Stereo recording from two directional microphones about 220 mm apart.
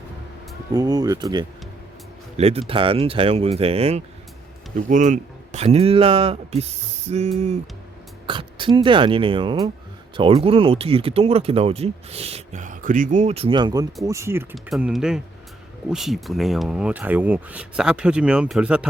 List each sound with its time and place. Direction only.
0.7 s speech: 15° right (ahead or behind)
8.3 s speech: 20° right (ahead or behind); by 18.9 s 5° right (ahead or behind)